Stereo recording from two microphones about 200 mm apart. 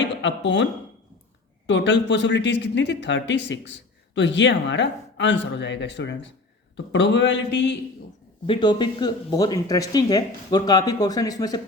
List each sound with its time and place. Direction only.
0.0 s a man's voice: 65° left (ahead or behind)
8.4 s speech: 25° left (ahead or behind)